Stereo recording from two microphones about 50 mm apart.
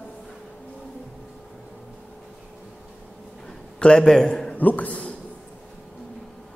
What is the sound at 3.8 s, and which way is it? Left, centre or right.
Speech, centre.